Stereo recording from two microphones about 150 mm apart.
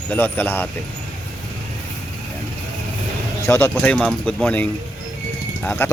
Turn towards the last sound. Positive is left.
turn(degrees=10)  # may be behind; listen again after turning